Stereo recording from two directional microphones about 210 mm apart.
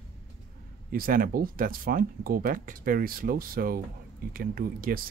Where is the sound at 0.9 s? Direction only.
45° right (ahead or behind).